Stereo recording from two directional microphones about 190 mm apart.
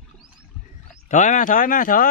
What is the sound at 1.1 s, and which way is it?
Speech, 40° left (ahead or behind).